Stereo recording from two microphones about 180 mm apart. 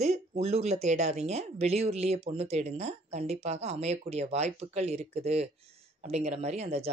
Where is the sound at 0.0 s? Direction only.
35° right (ahead or behind).